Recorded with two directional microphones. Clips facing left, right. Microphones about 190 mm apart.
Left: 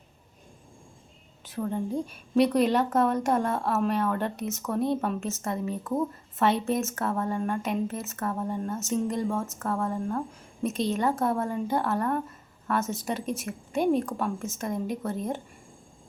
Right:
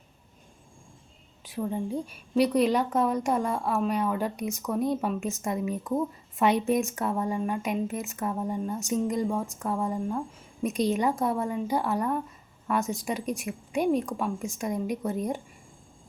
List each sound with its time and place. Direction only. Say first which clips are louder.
1.5 s a woman's voice: left 1 dB; 10° right (ahead or behind)